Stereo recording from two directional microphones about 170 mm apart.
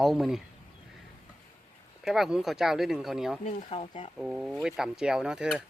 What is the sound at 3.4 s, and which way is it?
Speech, 35° left (ahead or behind).